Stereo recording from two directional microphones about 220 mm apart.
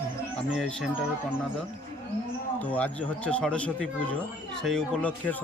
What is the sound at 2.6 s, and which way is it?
Speech, 5° left (ahead or behind).